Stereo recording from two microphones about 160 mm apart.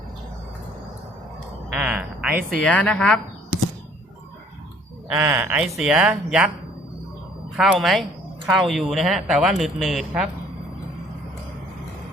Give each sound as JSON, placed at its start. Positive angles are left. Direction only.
{"t": 1.7, "sound": "a sound", "side_deg": -5}
{"t": 2.5, "sound": "speech", "side_deg": 5}
{"t": 5.1, "sound": "speech", "side_deg": -15}
{"t": 7.5, "sound": "speech", "side_deg": -5}